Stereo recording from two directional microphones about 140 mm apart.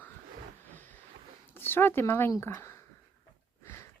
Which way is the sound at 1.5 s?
15° left (ahead or behind).